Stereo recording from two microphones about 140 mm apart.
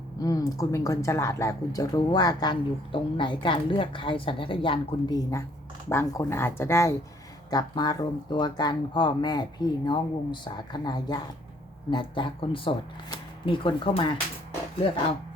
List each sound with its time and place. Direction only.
0.2 s a woman's voice: 25° left (ahead or behind)
7.5 s speech: 30° left (ahead or behind)